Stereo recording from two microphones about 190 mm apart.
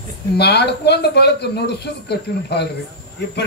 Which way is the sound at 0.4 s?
60° left (ahead or behind).